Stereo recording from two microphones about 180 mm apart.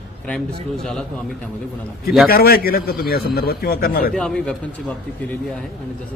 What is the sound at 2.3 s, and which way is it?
A man's voice, 55° left (ahead or behind).